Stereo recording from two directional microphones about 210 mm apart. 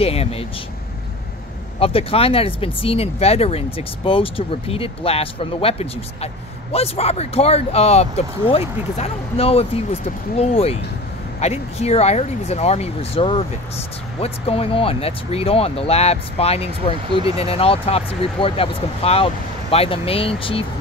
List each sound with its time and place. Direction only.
0.0 s speech: 30° left (ahead or behind)
1.8 s speech: 25° left (ahead or behind)
17.1 s speech: 20° right (ahead or behind)
17.4 s speech: 25° left (ahead or behind)